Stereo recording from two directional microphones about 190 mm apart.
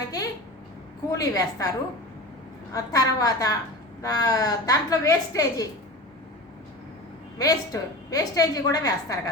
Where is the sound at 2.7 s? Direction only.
20° left (ahead or behind).